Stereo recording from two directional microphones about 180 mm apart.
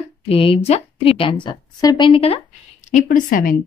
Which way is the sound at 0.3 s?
30° left (ahead or behind).